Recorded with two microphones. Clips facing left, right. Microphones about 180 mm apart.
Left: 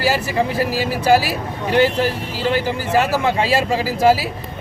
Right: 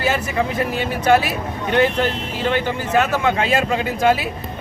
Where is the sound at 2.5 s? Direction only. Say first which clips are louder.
Left 1 dB; 35° left (ahead or behind).